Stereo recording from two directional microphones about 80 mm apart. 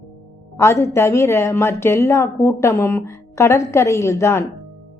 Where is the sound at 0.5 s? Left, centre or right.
Left.